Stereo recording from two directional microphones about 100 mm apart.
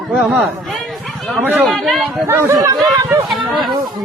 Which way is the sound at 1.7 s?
Centre (ahead or behind).